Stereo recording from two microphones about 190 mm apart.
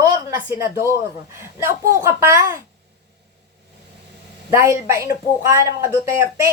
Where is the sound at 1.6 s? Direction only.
15° right (ahead or behind).